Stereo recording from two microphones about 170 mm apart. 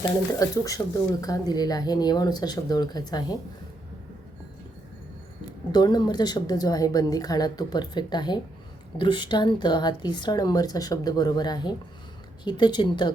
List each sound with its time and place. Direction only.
0.3 s speech: 20° left (ahead or behind)
5.7 s speech: 25° left (ahead or behind)